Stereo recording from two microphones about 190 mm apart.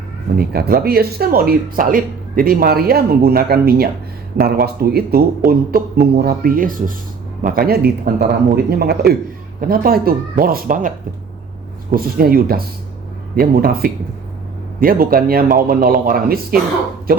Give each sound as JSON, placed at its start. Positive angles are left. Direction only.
{"t": 0.3, "sound": "speech", "side_deg": -55}